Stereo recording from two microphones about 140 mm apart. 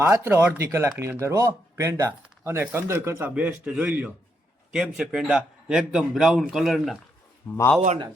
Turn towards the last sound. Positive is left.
turn(degrees=15)  # may be behind; listen again after turning